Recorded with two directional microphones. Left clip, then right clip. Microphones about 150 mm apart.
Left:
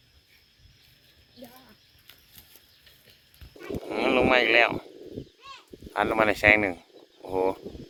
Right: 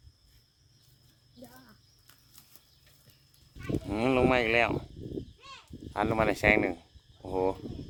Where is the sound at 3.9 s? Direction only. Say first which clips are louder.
Left 4 dB; 5° right (ahead or behind).